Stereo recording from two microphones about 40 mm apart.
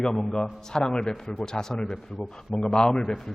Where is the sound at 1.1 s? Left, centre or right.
Centre.